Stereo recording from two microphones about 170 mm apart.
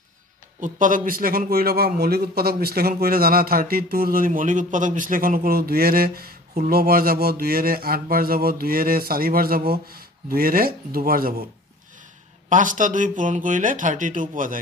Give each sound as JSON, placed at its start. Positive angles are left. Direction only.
{"t": 0.6, "sound": "a man's voice", "side_deg": -50}
{"t": 12.4, "sound": "speech", "side_deg": -50}